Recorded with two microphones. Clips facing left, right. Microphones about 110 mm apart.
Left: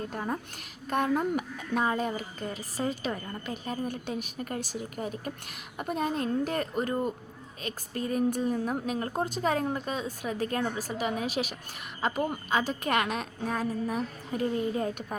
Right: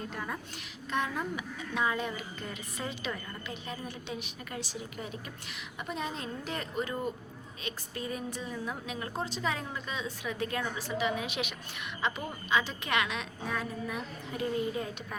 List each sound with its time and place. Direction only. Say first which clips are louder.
0.1 s a woman's voice: left 5 dB; 40° left (ahead or behind)